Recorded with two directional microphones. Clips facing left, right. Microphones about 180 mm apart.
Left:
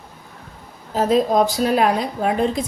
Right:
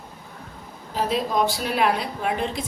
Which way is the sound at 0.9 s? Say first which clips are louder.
Left 7 dB; 40° left (ahead or behind).